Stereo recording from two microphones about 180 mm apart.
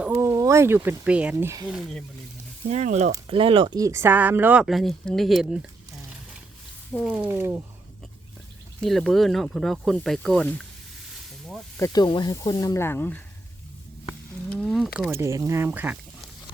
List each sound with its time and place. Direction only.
0.0 s speech: 10° right (ahead or behind)
1.6 s speech: centre (ahead or behind)
2.6 s speech: 40° right (ahead or behind); by 5.5 s centre (ahead or behind)
6.9 s speech: centre (ahead or behind)
7.2 s speech: 15° right (ahead or behind)
8.8 s speech: centre (ahead or behind)
11.8 s speech: 20° left (ahead or behind)
14.5 s speech: 5° left (ahead or behind)
15.1 s speech: 15° right (ahead or behind)